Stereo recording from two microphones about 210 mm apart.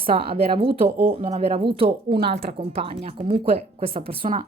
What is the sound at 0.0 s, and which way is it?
Speech, 25° right (ahead or behind).